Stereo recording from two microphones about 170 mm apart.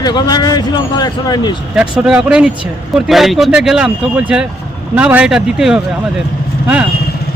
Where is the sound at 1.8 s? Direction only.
5° right (ahead or behind).